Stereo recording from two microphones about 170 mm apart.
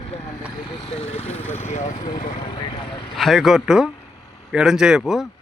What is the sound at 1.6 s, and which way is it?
Speech, 40° left (ahead or behind).